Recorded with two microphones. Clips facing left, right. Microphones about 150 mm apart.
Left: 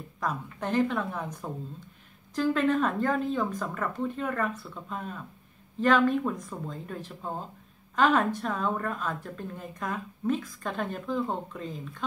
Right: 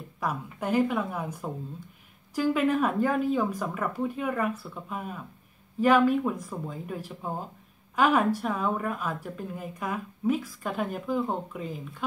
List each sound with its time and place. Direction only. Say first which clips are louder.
0.2 s speech: right 1 dB; 10° right (ahead or behind)